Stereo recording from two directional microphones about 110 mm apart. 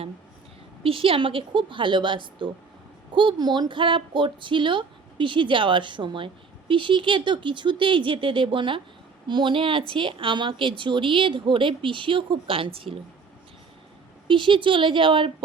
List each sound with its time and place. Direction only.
0.8 s speech: 60° right (ahead or behind)
14.3 s speech: 50° right (ahead or behind)